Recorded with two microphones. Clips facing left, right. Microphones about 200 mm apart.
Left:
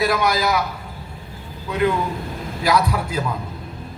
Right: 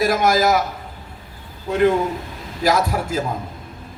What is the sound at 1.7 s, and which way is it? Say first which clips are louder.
A man's voice: right 4 dB; 45° right (ahead or behind).